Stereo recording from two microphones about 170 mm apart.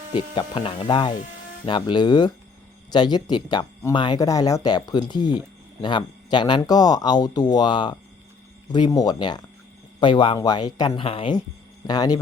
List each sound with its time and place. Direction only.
0.3 s speech: 30° left (ahead or behind)